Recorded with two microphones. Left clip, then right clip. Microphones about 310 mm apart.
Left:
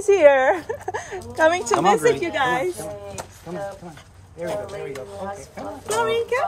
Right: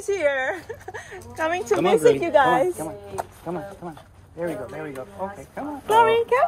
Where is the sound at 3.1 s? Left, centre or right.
Centre.